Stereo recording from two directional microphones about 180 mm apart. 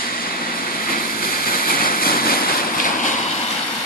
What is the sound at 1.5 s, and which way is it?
Vehicle, 55° left (ahead or behind).